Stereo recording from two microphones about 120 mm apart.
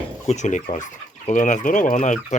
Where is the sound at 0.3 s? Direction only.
80° left.